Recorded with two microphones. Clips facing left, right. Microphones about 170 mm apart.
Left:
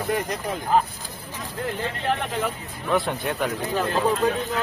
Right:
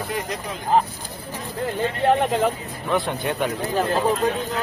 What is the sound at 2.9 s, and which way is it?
Speech, centre (ahead or behind).